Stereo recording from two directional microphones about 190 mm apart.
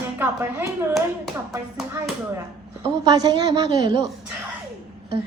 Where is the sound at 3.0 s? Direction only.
20° right (ahead or behind).